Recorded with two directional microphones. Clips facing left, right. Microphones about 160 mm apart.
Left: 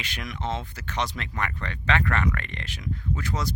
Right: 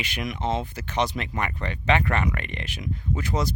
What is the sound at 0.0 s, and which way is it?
Speech, 15° right (ahead or behind).